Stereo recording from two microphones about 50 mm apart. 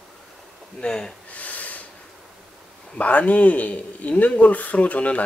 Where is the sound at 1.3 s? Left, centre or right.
Left.